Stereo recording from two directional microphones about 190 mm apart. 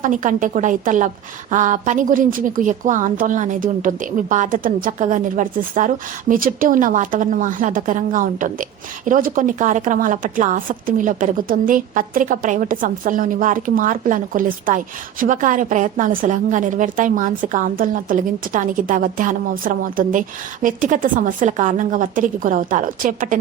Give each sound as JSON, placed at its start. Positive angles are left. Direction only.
{"t": 0.0, "sound": "a woman's voice", "side_deg": -45}